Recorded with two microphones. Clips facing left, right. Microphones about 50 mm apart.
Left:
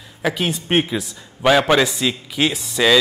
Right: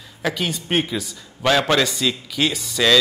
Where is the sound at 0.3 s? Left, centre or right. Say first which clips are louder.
Left 3 dB; centre.